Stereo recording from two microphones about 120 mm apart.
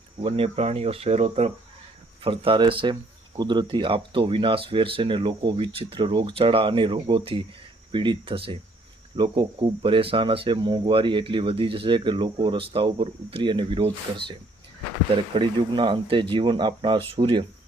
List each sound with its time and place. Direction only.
0.2 s speech: 50° right (ahead or behind)
2.2 s speech: 45° right (ahead or behind)